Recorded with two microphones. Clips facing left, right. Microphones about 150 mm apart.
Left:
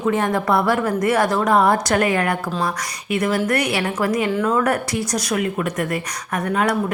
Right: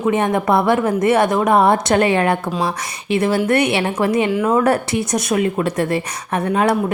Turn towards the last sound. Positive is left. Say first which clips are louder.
# right 3 dB
turn(degrees=-25)  # may be behind; listen again after turning